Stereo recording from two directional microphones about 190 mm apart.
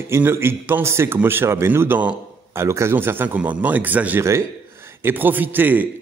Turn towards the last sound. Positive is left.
turn(degrees=-10)  # may be behind; listen again after turning